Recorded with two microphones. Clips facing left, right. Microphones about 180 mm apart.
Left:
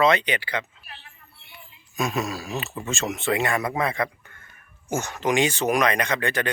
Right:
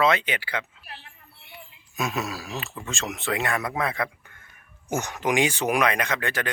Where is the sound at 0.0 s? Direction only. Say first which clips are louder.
Left 2 dB; 5° right (ahead or behind).